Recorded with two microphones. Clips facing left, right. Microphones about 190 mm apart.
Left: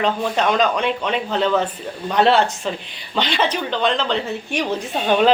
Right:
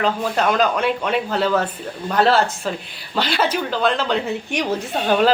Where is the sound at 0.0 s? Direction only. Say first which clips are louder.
Even; 5° right (ahead or behind).